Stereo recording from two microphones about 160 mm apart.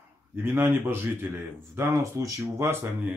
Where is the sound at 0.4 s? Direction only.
15° right (ahead or behind).